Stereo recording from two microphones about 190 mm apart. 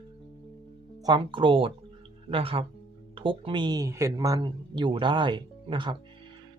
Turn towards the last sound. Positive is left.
turn(degrees=-25)  # may be behind; listen again after turning